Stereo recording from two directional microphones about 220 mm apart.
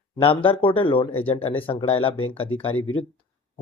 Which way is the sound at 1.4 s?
25° left (ahead or behind).